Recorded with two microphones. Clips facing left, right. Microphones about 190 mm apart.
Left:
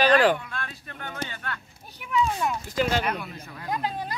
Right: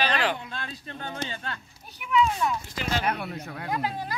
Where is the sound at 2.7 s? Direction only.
45° left (ahead or behind).